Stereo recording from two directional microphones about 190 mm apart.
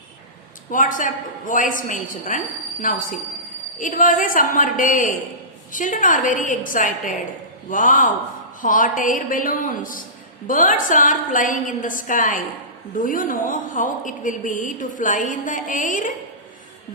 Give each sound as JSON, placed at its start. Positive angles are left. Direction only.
{"t": 0.7, "sound": "a woman's voice", "side_deg": 45}
{"t": 3.8, "sound": "a woman's voice", "side_deg": 45}